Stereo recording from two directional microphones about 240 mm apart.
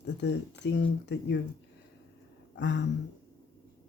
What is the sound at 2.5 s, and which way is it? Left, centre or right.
Speech, left.